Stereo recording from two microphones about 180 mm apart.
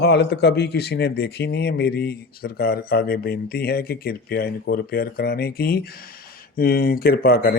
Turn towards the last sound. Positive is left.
turn(degrees=55)  # may be behind; listen again after turning